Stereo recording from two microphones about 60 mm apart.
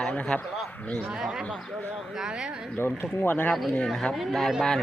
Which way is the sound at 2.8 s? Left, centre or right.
Left.